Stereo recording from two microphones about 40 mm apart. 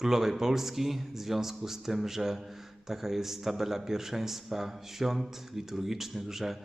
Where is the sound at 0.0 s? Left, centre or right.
Centre.